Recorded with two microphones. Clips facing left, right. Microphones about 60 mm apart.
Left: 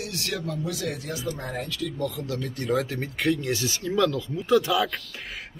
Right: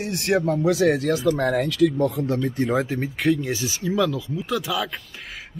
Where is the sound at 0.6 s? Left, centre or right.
Right.